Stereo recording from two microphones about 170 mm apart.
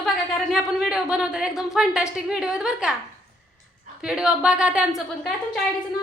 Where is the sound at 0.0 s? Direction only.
Centre (ahead or behind).